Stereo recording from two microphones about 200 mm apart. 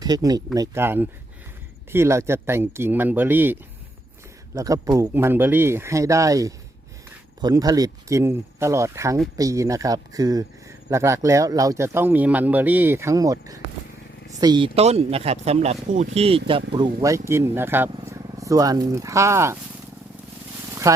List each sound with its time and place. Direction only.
0.0 s speech: 20° right (ahead or behind)
16.7 s speech: 20° right (ahead or behind)
20.9 s speech: 15° right (ahead or behind)